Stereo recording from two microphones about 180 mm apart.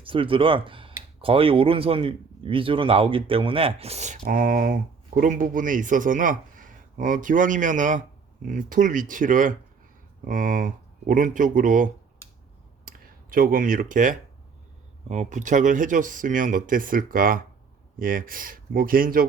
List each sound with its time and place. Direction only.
0.0 s speech: 30° right (ahead or behind); by 11.9 s 45° right (ahead or behind)
12.8 s a sound: 50° right (ahead or behind)
15.1 s speech: 40° right (ahead or behind)